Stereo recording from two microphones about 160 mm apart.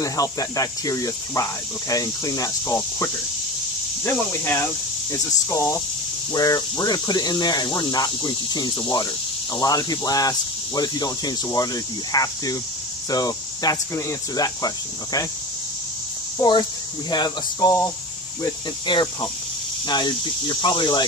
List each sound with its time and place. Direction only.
0.0 s speech: 20° left (ahead or behind)
16.3 s speech: 30° left (ahead or behind)